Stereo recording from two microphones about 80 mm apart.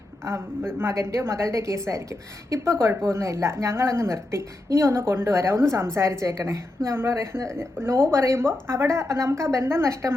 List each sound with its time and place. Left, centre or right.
0.3 s a woman's voice: right